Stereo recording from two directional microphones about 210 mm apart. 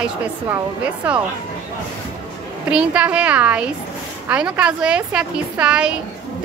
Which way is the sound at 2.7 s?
5° right (ahead or behind).